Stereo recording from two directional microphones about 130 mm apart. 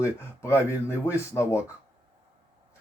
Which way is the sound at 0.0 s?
20° left (ahead or behind).